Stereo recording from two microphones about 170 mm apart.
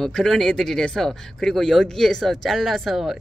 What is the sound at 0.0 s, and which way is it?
Speech, 5° left (ahead or behind).